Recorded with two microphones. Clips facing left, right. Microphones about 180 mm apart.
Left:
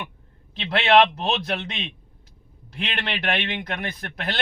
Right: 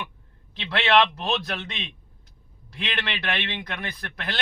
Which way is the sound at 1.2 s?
30° left (ahead or behind).